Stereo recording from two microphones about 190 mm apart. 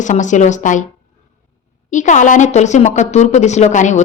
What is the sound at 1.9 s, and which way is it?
A woman's voice, 40° left (ahead or behind).